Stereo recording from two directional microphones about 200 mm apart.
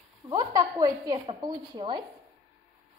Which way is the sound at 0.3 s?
20° right (ahead or behind).